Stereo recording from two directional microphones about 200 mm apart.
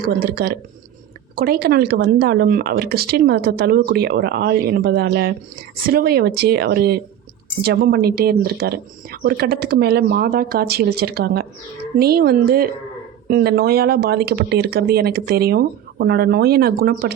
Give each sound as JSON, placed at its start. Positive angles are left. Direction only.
{"t": 0.0, "sound": "speech", "side_deg": -50}